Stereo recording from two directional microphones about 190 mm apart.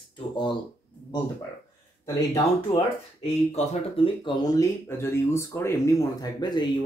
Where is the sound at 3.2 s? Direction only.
35° left (ahead or behind).